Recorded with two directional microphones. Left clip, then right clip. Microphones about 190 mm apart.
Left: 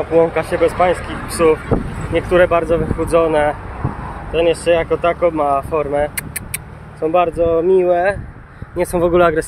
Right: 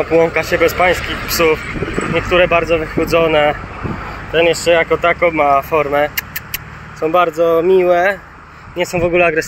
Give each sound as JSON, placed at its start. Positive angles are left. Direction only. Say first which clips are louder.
{"t": 0.1, "sound": "speech", "louder": "even", "side_deg": 0}
{"t": 8.7, "sound": "speech", "louder": "even", "side_deg": 20}